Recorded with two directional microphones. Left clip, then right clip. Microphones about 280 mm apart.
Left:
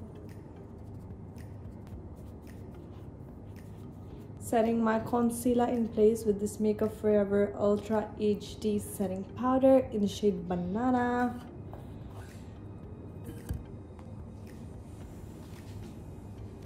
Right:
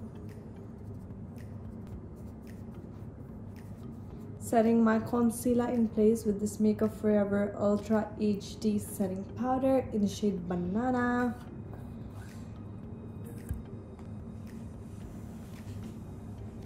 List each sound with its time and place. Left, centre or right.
4.5 s a woman's voice: centre